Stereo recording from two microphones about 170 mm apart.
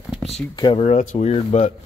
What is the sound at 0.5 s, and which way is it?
Speech, 30° left (ahead or behind).